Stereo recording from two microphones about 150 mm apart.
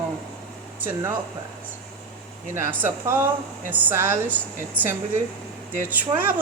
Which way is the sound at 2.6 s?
15° right (ahead or behind).